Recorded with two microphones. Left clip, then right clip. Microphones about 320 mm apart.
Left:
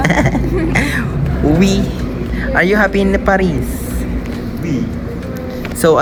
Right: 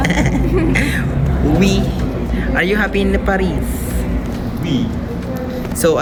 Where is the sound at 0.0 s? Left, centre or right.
Centre.